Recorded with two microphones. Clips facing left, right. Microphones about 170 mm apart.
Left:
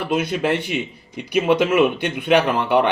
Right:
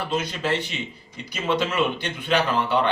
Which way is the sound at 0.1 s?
60° left (ahead or behind).